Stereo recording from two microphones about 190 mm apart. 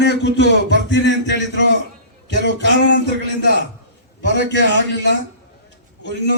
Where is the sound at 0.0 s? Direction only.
65° left (ahead or behind).